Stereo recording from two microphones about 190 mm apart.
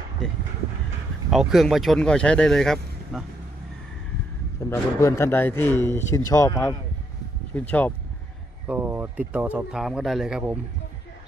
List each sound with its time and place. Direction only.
1.3 s speech: centre (ahead or behind)
4.6 s speech: 15° left (ahead or behind)
8.6 s speech: 10° right (ahead or behind)